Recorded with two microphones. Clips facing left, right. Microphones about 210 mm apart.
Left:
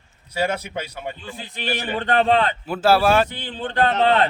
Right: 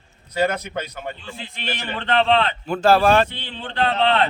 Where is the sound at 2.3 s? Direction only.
5° left (ahead or behind).